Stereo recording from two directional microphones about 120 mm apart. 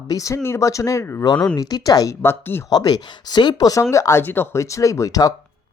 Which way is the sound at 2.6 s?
35° left (ahead or behind).